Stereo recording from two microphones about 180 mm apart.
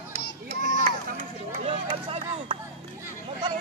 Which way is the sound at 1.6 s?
30° right (ahead or behind).